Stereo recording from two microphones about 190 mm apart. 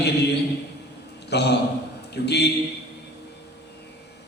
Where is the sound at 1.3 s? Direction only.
60° left (ahead or behind).